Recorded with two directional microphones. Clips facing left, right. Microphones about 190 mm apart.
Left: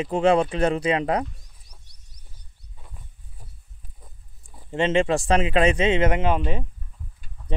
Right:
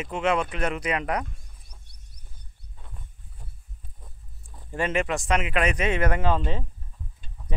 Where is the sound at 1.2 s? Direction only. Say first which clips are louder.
Left 6 dB; 55° right (ahead or behind).